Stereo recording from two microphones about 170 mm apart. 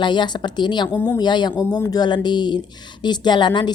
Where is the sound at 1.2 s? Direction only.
25° left (ahead or behind).